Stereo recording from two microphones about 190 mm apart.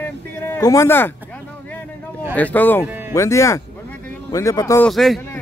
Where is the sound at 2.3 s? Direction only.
10° left (ahead or behind).